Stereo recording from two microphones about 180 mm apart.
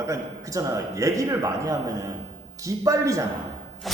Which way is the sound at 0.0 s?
15° right (ahead or behind).